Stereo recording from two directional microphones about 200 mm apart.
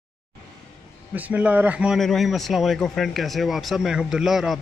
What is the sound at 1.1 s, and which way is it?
A man's voice, 5° right (ahead or behind).